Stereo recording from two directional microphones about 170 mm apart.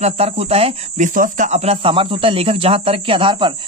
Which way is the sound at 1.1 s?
50° right (ahead or behind).